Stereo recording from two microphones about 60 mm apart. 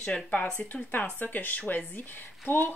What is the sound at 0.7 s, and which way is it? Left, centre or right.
A woman's voice, left.